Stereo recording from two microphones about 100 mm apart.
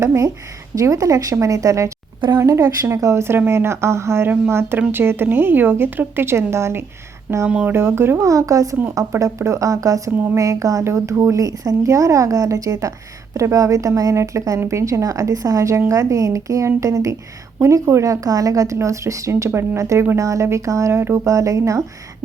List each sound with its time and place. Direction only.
0.0 s a woman's voice: 25° right (ahead or behind)
7.4 s a woman's voice: 15° right (ahead or behind); by 10.1 s 35° right (ahead or behind)
10.1 s a woman's voice: 25° right (ahead or behind)
10.4 s a woman's voice: 35° right (ahead or behind)